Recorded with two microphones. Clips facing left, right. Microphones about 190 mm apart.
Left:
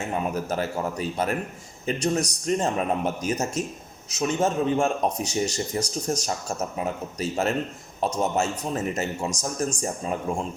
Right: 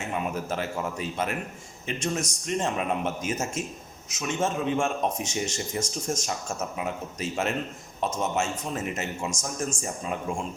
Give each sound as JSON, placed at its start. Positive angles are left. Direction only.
{"t": 0.5, "sound": "speech", "side_deg": 40}